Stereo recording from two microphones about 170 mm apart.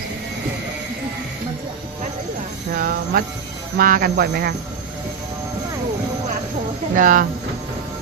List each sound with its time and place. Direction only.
2.7 s a sound: 60° right (ahead or behind)
3.8 s speech: 55° right (ahead or behind)
6.9 s speech: 50° right (ahead or behind)